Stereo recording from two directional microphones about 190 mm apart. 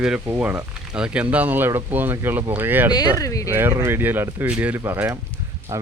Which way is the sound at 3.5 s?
10° right (ahead or behind).